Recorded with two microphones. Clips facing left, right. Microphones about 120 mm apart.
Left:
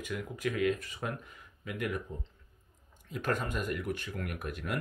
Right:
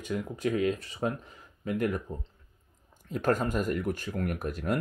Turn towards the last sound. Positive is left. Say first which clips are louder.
# right 7 dB
turn(degrees=-35)  # may be behind; listen again after turning